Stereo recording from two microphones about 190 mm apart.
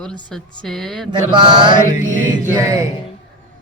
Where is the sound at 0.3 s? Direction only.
5° left (ahead or behind).